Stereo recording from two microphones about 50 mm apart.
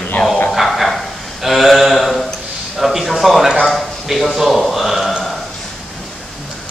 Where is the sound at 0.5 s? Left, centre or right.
Centre.